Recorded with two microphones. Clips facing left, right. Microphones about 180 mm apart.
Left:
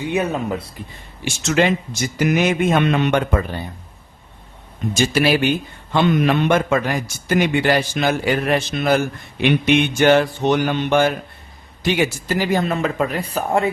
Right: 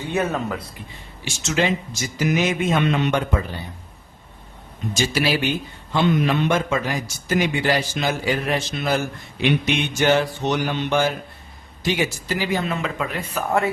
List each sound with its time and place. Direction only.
0.0 s speech: 15° left (ahead or behind)
1.2 s a man's voice: 60° left (ahead or behind)
4.9 s a man's voice: 55° left (ahead or behind)